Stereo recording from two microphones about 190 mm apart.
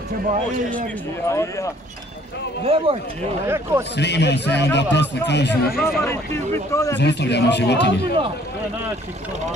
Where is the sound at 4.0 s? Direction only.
65° left (ahead or behind).